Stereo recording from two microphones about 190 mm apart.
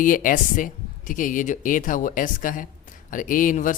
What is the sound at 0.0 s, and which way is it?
A woman's voice, 45° left (ahead or behind).